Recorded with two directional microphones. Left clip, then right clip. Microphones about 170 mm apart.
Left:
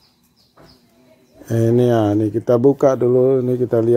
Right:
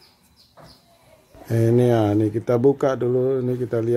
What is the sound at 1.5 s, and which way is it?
Speech, 15° left (ahead or behind).